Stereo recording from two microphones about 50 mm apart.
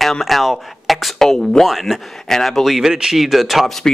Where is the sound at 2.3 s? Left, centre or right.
Centre.